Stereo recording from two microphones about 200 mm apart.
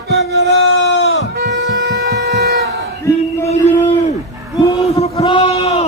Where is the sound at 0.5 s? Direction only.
90° left; by 1.2 s 65° left (ahead or behind).